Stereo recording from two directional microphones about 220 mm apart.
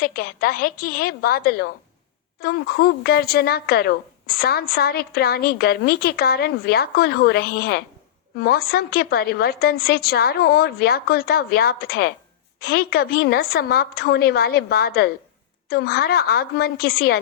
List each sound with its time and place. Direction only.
0.0 s a woman's voice: 45° left (ahead or behind)